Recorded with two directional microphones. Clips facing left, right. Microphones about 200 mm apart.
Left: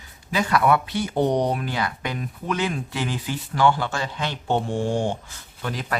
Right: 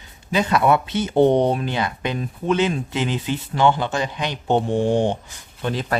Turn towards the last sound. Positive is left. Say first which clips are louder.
# right 5 dB
turn(degrees=-25)  # may be behind; listen again after turning